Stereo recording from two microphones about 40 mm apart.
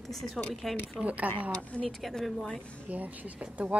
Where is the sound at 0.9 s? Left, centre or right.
Right.